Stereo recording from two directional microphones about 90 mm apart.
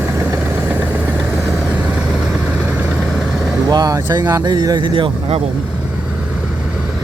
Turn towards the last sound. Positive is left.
turn(degrees=-80)